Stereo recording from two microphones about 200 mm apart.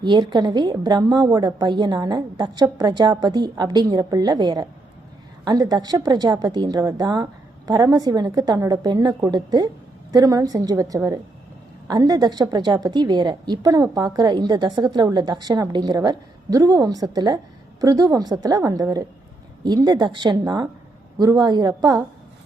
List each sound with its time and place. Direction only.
0.0 s a woman's voice: 20° right (ahead or behind)